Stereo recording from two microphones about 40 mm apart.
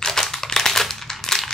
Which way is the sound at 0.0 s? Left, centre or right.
Centre.